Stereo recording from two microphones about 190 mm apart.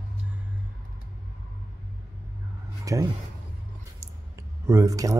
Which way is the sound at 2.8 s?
20° right (ahead or behind).